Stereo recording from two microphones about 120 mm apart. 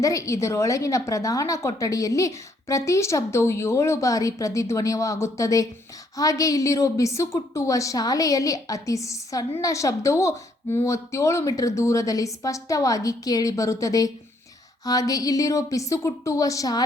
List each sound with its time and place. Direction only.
0.0 s a woman's voice: 25° left (ahead or behind)